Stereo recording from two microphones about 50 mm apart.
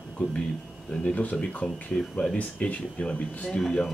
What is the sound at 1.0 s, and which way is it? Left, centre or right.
Speech, left.